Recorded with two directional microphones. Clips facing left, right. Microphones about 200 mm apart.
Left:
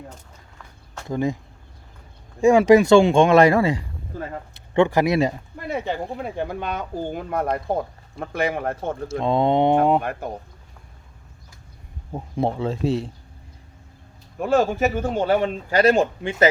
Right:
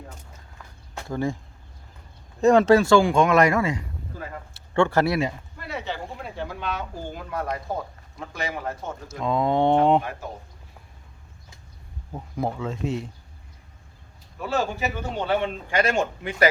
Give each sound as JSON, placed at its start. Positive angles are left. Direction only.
{"t": 1.0, "sound": "speech", "side_deg": 20}
{"t": 2.4, "sound": "speech", "side_deg": 10}
{"t": 4.5, "sound": "speech", "side_deg": 20}
{"t": 5.6, "sound": "a man's voice", "side_deg": 50}
{"t": 9.2, "sound": "speech", "side_deg": 30}
{"t": 10.0, "sound": "speech", "side_deg": 55}
{"t": 12.1, "sound": "speech", "side_deg": 30}
{"t": 14.3, "sound": "a man's voice", "side_deg": 50}